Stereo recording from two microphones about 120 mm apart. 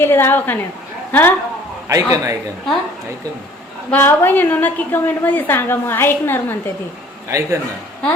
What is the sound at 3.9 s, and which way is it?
A woman's voice, 20° left (ahead or behind).